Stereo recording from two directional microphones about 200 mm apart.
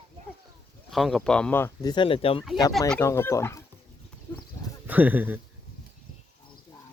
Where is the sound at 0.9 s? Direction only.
Centre (ahead or behind); by 2.5 s 25° left (ahead or behind).